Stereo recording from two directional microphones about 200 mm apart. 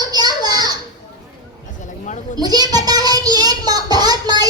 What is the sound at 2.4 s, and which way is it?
Child singing, 20° right (ahead or behind).